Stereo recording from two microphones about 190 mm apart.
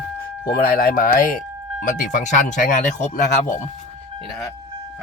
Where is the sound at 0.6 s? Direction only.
50° left (ahead or behind).